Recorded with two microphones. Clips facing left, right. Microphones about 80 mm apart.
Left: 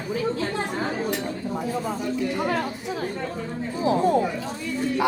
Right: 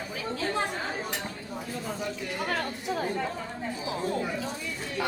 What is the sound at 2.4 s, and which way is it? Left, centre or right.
Speech, centre.